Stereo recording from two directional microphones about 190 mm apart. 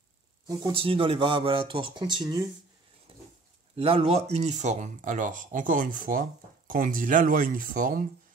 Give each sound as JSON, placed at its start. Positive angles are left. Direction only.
{"t": 0.5, "sound": "speech", "side_deg": -25}
{"t": 3.7, "sound": "speech", "side_deg": -30}